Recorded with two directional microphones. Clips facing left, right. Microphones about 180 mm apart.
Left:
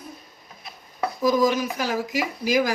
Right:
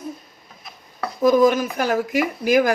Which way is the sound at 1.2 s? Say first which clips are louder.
Right 5 dB; 55° right (ahead or behind).